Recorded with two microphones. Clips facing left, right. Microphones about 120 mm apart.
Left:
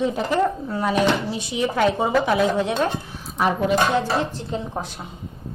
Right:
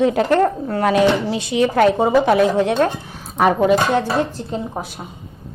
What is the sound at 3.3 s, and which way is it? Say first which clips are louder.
Speech: right 5 dB; 65° right (ahead or behind).